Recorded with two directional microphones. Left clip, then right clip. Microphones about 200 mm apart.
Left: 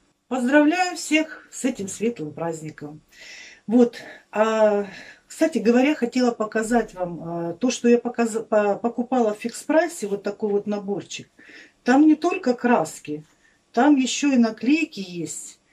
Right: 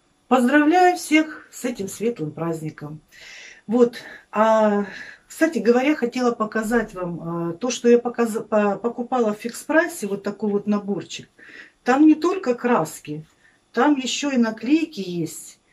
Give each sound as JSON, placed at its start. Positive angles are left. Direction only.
{"t": 0.3, "sound": "speech", "side_deg": 5}